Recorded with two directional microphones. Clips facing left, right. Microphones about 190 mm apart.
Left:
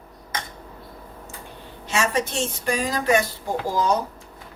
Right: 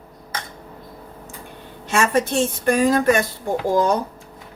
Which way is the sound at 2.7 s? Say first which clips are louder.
Right 5 dB; 55° right (ahead or behind).